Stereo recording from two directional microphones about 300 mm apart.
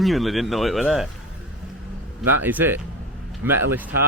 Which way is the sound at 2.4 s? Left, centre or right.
Centre.